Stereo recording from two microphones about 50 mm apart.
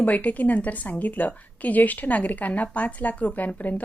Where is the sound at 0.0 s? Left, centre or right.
Left.